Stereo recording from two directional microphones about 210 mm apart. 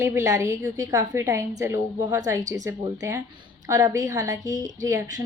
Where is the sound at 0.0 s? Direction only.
15° right (ahead or behind).